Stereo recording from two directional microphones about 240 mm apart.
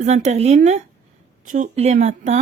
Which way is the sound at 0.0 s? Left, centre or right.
Right.